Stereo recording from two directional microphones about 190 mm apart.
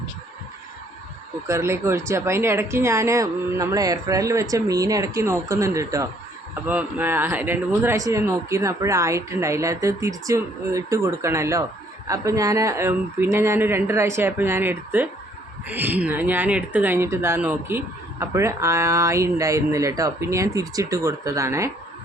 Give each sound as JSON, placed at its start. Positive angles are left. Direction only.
{"t": 1.5, "sound": "speech", "side_deg": -15}